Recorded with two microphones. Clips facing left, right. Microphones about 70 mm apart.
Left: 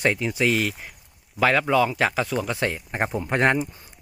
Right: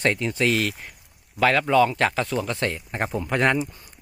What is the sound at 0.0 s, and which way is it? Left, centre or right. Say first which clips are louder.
Speech: even; centre.